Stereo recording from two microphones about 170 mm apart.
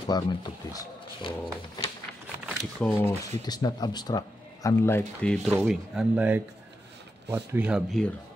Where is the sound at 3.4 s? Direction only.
25° left (ahead or behind).